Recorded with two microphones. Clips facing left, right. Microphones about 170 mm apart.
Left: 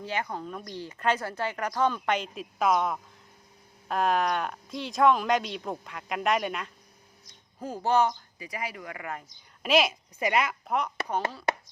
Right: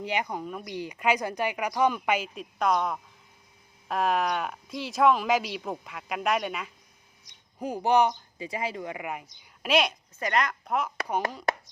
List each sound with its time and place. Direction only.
0.0 s speech: 15° right (ahead or behind)
7.6 s speech: 15° right (ahead or behind)
9.6 s speech: centre (ahead or behind)